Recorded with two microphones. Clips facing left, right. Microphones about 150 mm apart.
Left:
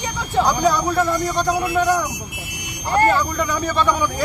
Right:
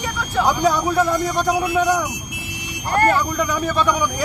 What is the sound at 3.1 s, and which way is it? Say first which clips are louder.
Speech: even; 5° right (ahead or behind).